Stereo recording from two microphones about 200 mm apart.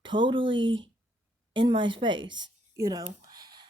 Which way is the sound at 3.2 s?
20° right (ahead or behind).